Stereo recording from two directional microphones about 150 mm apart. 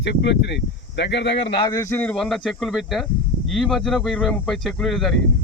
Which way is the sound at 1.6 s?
20° left (ahead or behind).